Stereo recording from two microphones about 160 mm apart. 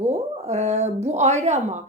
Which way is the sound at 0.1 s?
45° right (ahead or behind).